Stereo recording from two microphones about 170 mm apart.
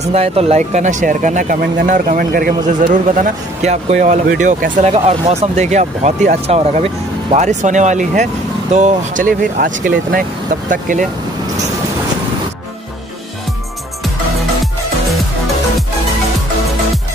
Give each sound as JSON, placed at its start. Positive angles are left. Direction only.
{"t": 0.0, "sound": "speech", "side_deg": -40}